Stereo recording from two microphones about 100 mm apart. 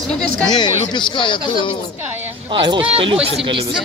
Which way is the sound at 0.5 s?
45° left (ahead or behind).